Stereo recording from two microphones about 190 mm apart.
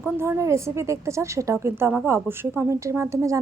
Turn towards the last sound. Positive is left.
turn(degrees=-15)  # may be behind; listen again after turning